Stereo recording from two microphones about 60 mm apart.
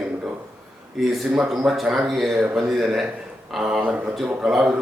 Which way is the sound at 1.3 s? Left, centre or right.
Centre.